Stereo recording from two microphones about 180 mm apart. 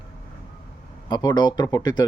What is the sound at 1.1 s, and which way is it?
Speech, 20° left (ahead or behind).